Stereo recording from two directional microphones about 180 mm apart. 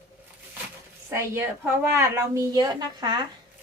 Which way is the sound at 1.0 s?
10° right (ahead or behind).